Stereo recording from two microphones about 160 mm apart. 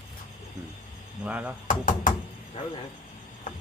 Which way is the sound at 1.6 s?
55° left (ahead or behind).